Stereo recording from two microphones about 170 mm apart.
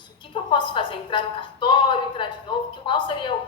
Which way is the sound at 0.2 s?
30° left (ahead or behind).